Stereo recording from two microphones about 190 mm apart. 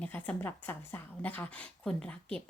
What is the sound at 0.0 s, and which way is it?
A woman's voice, 10° left (ahead or behind).